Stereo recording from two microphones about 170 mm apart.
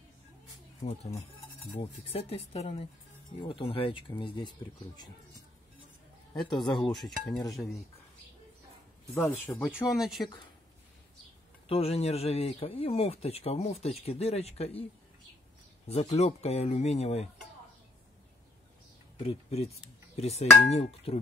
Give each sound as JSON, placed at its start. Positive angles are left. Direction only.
{"t": 0.8, "sound": "speech", "side_deg": 40}
{"t": 6.5, "sound": "speech", "side_deg": 25}
{"t": 7.0, "sound": "dishes", "side_deg": 5}
{"t": 9.1, "sound": "speech", "side_deg": 15}
{"t": 9.9, "sound": "dishes", "side_deg": 0}
{"t": 11.6, "sound": "speech", "side_deg": 35}
{"t": 15.9, "sound": "speech", "side_deg": 35}
{"t": 19.1, "sound": "speech", "side_deg": 35}